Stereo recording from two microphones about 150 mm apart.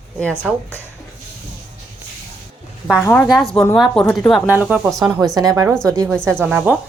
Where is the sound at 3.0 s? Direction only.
20° left (ahead or behind).